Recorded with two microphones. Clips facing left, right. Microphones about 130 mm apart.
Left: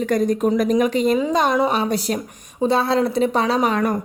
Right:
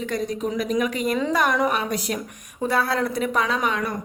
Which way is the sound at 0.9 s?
25° left (ahead or behind).